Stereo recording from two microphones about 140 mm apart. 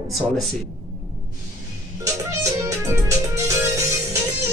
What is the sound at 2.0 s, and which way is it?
Music, 25° right (ahead or behind).